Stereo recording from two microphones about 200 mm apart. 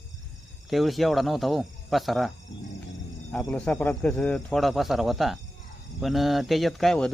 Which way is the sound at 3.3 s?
5° left (ahead or behind).